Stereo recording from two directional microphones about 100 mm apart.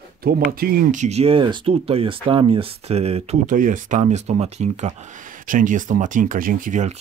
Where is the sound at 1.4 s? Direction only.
55° right (ahead or behind).